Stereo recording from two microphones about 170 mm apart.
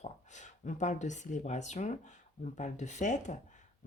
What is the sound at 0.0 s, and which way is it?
Speech, 45° left (ahead or behind).